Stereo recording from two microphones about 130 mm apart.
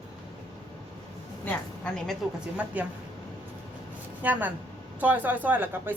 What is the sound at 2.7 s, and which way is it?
Speech, 10° right (ahead or behind).